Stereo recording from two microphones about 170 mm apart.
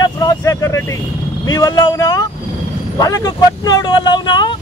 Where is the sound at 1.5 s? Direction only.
20° left (ahead or behind).